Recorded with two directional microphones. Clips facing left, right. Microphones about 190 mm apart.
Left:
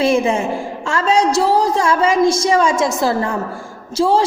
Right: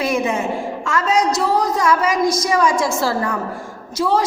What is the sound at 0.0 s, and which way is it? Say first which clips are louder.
A woman's voice: left 4 dB; 30° left (ahead or behind).